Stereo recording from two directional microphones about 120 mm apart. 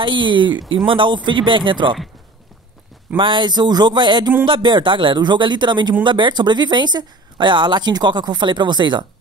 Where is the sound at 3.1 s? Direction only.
40° right (ahead or behind).